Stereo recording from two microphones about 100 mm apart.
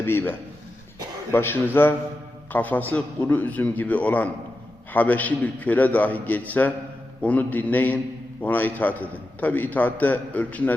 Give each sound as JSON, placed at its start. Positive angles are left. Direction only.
{"t": 0.0, "sound": "a man's voice", "side_deg": 25}